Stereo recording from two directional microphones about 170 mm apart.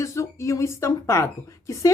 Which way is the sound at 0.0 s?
15° left (ahead or behind).